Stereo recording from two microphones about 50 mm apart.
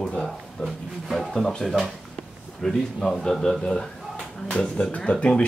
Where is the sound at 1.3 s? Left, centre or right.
Centre.